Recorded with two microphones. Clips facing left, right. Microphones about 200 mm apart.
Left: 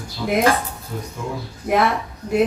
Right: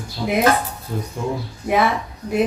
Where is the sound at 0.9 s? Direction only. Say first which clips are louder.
Right 4 dB; 30° right (ahead or behind).